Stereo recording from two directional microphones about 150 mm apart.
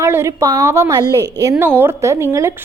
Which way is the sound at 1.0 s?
15° left (ahead or behind).